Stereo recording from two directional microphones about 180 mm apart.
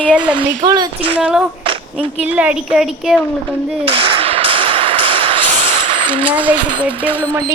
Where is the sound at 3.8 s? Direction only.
30° right (ahead or behind).